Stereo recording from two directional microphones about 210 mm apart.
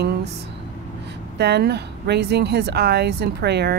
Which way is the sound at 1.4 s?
50° right (ahead or behind).